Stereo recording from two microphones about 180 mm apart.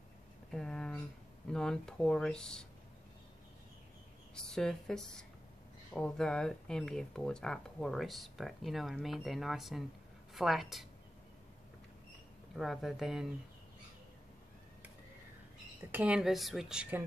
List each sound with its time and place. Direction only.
0.5 s a sound: 5° left (ahead or behind)
1.5 s speech: 5° left (ahead or behind)
4.4 s speech: 5° left (ahead or behind)
12.5 s speech: centre (ahead or behind)
15.9 s speech: 5° right (ahead or behind)